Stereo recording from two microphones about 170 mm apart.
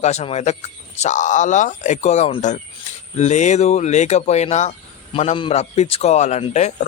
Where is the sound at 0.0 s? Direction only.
40° left (ahead or behind).